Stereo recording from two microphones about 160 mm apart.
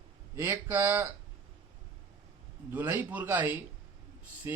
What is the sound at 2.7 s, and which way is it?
Speech, 15° right (ahead or behind).